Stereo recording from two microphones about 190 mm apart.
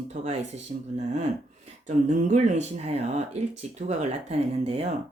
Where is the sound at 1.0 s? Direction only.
35° right (ahead or behind).